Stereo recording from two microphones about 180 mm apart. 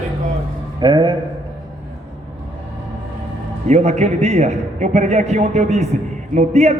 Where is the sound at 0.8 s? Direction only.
25° right (ahead or behind).